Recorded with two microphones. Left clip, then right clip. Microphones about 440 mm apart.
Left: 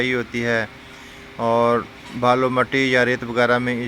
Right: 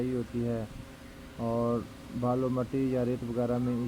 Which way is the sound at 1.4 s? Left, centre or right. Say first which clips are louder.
Left 14 dB; centre.